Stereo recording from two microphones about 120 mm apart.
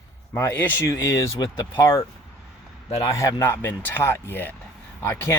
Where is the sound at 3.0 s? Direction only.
25° left (ahead or behind).